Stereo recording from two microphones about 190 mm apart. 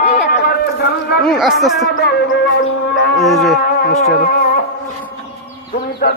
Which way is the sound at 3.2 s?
Centre (ahead or behind).